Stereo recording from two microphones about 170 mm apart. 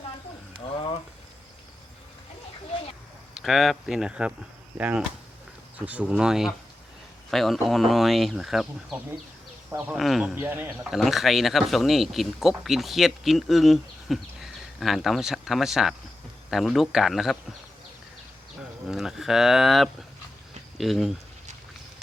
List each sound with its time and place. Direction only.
0.7 s a sound: 30° left (ahead or behind)
3.3 s speech: centre (ahead or behind)
10.3 s speech: 10° right (ahead or behind)
18.9 s speech: centre (ahead or behind)